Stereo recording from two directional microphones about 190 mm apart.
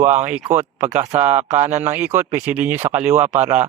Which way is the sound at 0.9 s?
35° right (ahead or behind).